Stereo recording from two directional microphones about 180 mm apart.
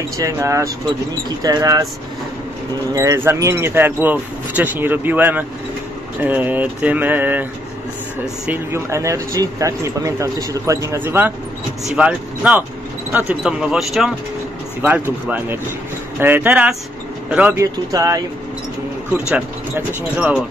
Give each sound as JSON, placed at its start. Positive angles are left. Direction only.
{"t": 0.2, "sound": "speech", "side_deg": -15}
{"t": 2.9, "sound": "speech", "side_deg": -15}
{"t": 8.5, "sound": "speech", "side_deg": -15}
{"t": 20.2, "sound": "speech", "side_deg": -5}